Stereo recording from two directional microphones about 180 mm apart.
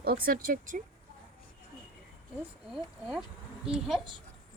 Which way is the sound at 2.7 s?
5° right (ahead or behind).